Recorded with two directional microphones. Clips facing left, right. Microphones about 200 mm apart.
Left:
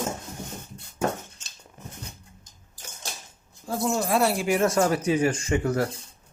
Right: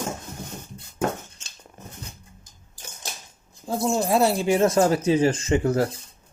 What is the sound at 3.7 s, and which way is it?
Speech, 25° right (ahead or behind).